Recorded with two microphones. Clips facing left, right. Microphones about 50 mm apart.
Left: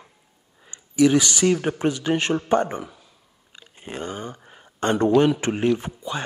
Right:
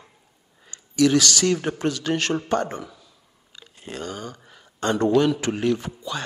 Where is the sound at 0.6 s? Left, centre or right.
Centre.